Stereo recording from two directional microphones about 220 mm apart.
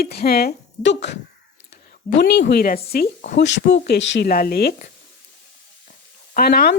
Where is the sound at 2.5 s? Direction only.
45° left (ahead or behind).